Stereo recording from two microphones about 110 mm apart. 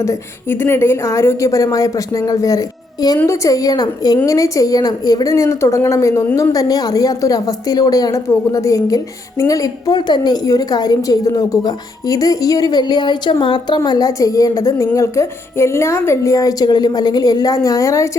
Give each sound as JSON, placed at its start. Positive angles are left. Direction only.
{"t": 0.0, "sound": "a woman's voice", "side_deg": 25}